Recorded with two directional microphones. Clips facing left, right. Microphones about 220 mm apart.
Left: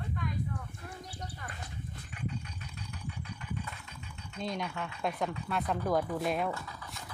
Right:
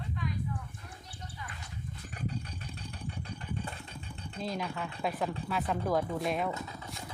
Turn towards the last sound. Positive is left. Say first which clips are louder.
# right 2 dB
turn(degrees=-20)  # may be behind; listen again after turning